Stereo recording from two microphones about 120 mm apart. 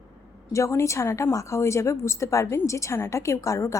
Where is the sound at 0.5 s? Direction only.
25° left (ahead or behind).